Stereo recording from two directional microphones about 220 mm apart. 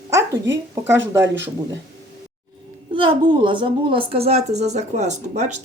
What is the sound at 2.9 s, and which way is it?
A woman's voice, 20° right (ahead or behind).